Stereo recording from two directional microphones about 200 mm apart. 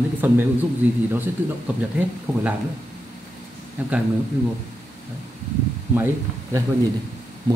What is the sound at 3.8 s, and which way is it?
Speech, 5° right (ahead or behind).